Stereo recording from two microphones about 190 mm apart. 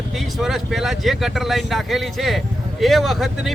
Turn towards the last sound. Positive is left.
turn(degrees=0)  # may be behind; listen again after turning